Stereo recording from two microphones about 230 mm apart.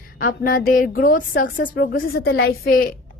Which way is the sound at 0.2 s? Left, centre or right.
Left.